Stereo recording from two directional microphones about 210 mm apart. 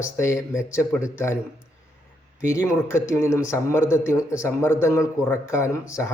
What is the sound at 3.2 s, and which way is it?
Speech, 15° left (ahead or behind).